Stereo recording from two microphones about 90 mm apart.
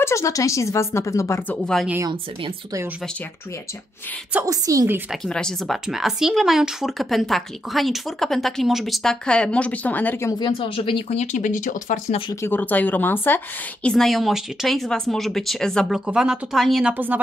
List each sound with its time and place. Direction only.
0.0 s speech: 35° left (ahead or behind)
1.5 s a woman's voice: 10° left (ahead or behind)
4.5 s a woman's voice: 40° right (ahead or behind)
5.1 s speech: 5° left (ahead or behind)
10.4 s speech: 75° left (ahead or behind)
12.4 s speech: 20° left (ahead or behind)
13.8 s speech: 5° left (ahead or behind)
15.9 s speech: 5° right (ahead or behind)
16.9 s speech: 20° right (ahead or behind)